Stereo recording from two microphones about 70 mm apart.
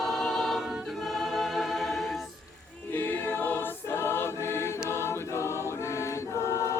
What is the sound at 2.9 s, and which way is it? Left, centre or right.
Choir, left.